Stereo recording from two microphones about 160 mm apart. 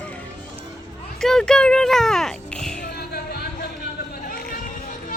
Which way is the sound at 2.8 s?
75° left (ahead or behind).